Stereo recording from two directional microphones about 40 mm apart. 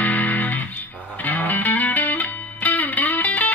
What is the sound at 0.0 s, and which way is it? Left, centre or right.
Music, left.